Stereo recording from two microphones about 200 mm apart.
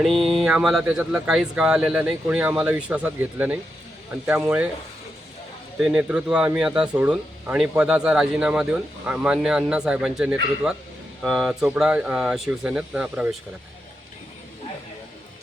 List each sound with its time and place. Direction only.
0.0 s speech: centre (ahead or behind)
5.8 s speech: 5° right (ahead or behind)